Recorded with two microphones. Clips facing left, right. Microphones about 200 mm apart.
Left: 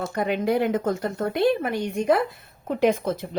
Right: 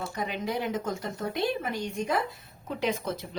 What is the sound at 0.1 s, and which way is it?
A woman's voice, 60° left (ahead or behind).